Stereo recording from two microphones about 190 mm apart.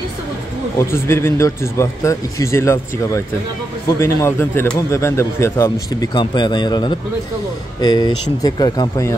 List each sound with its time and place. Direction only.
0.7 s speech: 15° left (ahead or behind)